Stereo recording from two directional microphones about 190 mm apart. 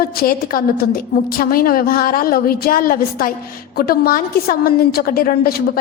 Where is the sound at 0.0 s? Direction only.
50° left (ahead or behind).